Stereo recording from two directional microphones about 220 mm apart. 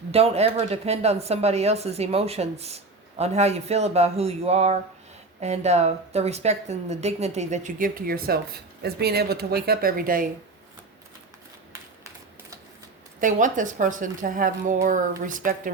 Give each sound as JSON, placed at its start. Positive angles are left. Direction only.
{"t": 0.1, "sound": "a woman's voice", "side_deg": -30}
{"t": 11.7, "sound": "a sound", "side_deg": -15}
{"t": 13.1, "sound": "a woman's voice", "side_deg": -35}